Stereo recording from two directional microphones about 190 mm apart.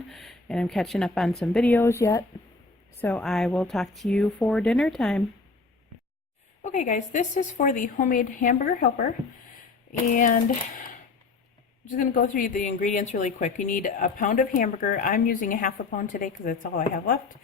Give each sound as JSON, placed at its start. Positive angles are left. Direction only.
{"t": 0.1, "sound": "speech", "side_deg": 0}
{"t": 1.8, "sound": "speech", "side_deg": 15}
{"t": 6.6, "sound": "a woman's voice", "side_deg": 40}
{"t": 10.2, "sound": "a sound", "side_deg": 40}
{"t": 11.9, "sound": "a woman's voice", "side_deg": 45}